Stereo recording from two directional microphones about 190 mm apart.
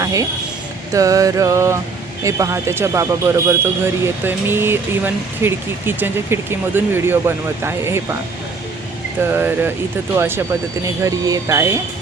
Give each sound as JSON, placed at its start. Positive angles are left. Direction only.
{"t": 0.0, "sound": "a sound", "side_deg": -15}
{"t": 0.9, "sound": "speech", "side_deg": -15}
{"t": 9.2, "sound": "speech", "side_deg": -10}